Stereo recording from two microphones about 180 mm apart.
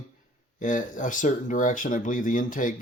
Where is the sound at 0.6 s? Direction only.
45° left (ahead or behind).